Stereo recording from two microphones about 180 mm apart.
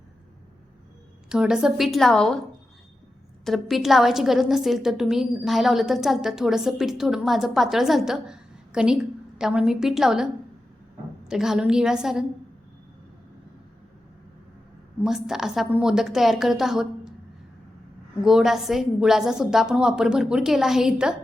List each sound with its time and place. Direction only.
1.3 s a woman's voice: 5° right (ahead or behind)
3.4 s a woman's voice: centre (ahead or behind)
11.3 s a woman's voice: 5° right (ahead or behind)
15.0 s a woman's voice: centre (ahead or behind)
18.3 s a woman's voice: centre (ahead or behind)